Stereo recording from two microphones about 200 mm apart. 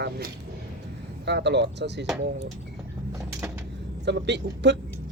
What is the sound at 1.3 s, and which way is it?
Speech, 60° right (ahead or behind).